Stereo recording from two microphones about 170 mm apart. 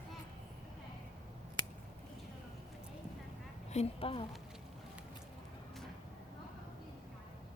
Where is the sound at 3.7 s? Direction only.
35° left (ahead or behind).